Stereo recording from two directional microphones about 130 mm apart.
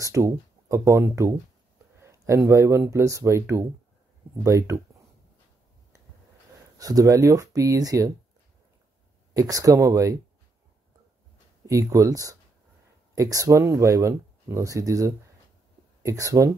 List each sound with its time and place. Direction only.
0.0 s speech: 25° right (ahead or behind)
6.8 s speech: 25° right (ahead or behind)
9.3 s speech: 25° right (ahead or behind)
11.6 s speech: 25° right (ahead or behind)